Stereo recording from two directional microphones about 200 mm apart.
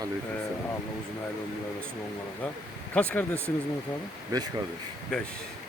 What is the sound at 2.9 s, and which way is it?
Speech, 5° left (ahead or behind).